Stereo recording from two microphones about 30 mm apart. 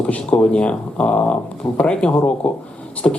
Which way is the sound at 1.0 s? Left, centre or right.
Left.